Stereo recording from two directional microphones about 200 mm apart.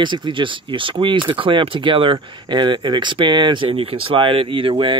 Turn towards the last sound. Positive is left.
turn(degrees=-25)  # may be behind; listen again after turning